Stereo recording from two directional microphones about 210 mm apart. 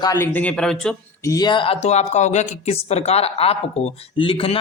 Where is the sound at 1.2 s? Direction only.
15° left (ahead or behind).